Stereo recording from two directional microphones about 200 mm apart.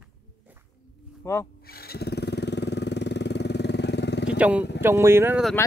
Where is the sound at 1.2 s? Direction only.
15° left (ahead or behind).